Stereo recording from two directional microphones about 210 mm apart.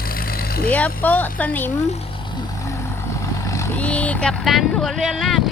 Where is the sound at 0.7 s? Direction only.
10° left (ahead or behind).